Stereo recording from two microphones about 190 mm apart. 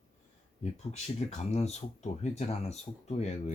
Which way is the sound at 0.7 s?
35° left (ahead or behind).